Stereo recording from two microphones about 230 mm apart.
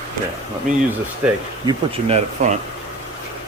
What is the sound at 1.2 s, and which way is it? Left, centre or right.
Speech, centre.